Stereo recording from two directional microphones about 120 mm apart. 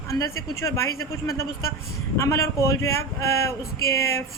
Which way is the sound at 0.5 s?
25° left (ahead or behind).